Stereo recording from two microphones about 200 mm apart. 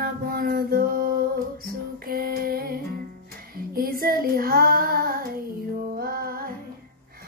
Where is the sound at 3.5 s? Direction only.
45° right (ahead or behind).